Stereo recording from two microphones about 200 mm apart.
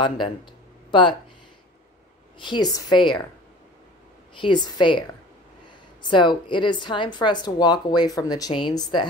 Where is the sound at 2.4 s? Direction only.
20° left (ahead or behind).